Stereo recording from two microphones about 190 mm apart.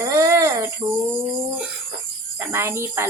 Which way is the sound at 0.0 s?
15° right (ahead or behind).